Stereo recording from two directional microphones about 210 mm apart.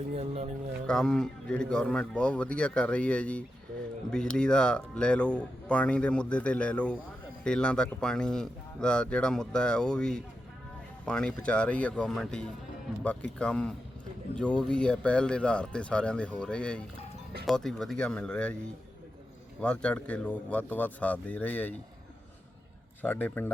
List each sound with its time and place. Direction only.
0.1 s speech: 30° right (ahead or behind)
0.9 s speech: 5° left (ahead or behind)
19.6 s speech: 5° left (ahead or behind)
23.0 s speech: 10° left (ahead or behind)